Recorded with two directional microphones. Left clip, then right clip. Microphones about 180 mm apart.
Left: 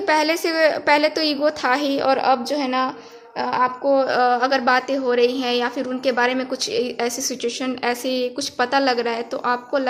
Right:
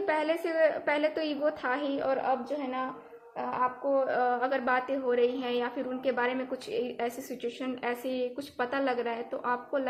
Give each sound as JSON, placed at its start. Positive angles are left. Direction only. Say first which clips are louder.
{"t": 0.0, "sound": "a woman's voice", "louder": "left 10 dB", "side_deg": 30}